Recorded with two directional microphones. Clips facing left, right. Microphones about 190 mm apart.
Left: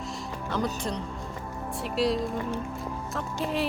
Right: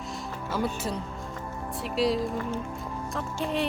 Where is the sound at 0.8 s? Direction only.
5° right (ahead or behind).